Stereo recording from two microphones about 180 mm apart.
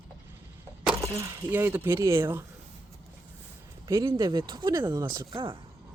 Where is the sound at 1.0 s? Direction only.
15° right (ahead or behind).